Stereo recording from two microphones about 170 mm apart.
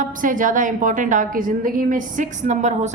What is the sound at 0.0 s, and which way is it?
A woman's voice, 50° right (ahead or behind).